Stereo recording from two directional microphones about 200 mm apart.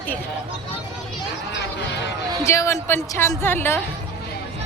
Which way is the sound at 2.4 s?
15° left (ahead or behind).